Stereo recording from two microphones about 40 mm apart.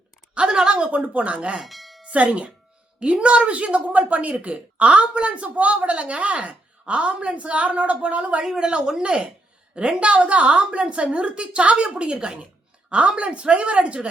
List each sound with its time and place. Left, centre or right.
0.5 s a woman's voice: centre
0.8 s a woman's voice: right
1.6 s a sound: centre
2.0 s a woman's voice: right
8.4 s a woman's voice: right